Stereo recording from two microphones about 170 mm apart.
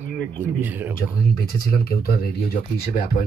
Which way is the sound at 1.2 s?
60° left (ahead or behind).